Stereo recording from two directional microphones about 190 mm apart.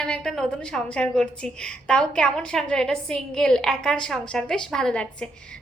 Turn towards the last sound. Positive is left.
turn(degrees=5)  # may be behind; listen again after turning